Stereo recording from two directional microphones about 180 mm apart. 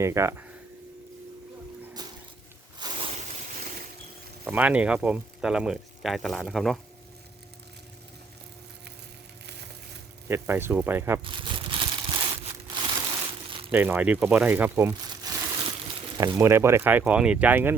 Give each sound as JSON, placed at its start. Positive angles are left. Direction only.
{"t": 0.0, "sound": "speech", "side_deg": -15}
{"t": 2.0, "sound": "music", "side_deg": -20}
{"t": 2.7, "sound": "a sound", "side_deg": -25}
{"t": 4.4, "sound": "speech", "side_deg": -10}
{"t": 10.2, "sound": "speech", "side_deg": -15}
{"t": 11.2, "sound": "crumpling", "side_deg": -30}
{"t": 12.7, "sound": "crushing", "side_deg": -25}
{"t": 13.7, "sound": "speech", "side_deg": -10}
{"t": 15.2, "sound": "crumpling", "side_deg": -20}
{"t": 16.1, "sound": "speech", "side_deg": -20}